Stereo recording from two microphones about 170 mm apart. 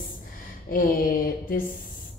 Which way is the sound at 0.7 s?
55° left (ahead or behind).